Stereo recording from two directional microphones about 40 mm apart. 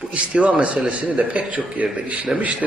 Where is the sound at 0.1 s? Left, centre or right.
Right.